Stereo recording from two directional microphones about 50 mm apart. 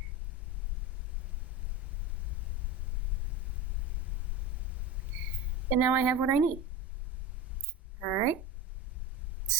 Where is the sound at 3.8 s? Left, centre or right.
Right.